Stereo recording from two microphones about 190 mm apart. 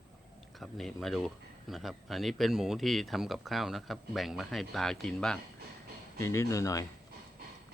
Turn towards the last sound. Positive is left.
turn(degrees=15)  # may be behind; listen again after turning